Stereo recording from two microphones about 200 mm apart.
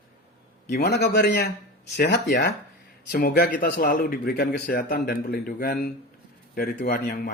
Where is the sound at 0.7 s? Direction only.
55° left (ahead or behind).